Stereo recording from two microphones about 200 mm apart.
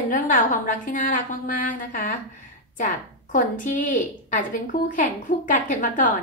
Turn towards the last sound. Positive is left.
turn(degrees=40)  # may be behind; listen again after turning